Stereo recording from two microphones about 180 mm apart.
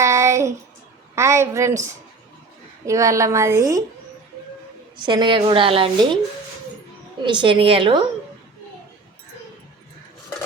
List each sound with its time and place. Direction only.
0.0 s a sound: 15° right (ahead or behind)
1.1 s a woman's voice: 15° right (ahead or behind)
4.9 s a woman's voice: 25° right (ahead or behind)
7.3 s a woman's voice: 25° right (ahead or behind)